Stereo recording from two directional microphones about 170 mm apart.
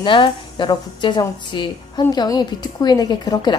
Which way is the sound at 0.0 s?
30° left (ahead or behind).